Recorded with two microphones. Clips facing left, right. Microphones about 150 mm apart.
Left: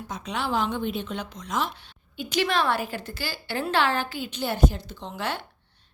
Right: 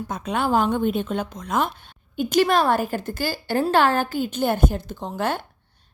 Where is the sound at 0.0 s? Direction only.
50° right (ahead or behind).